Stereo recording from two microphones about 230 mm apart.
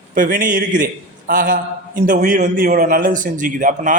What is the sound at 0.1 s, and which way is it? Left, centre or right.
Speech, right.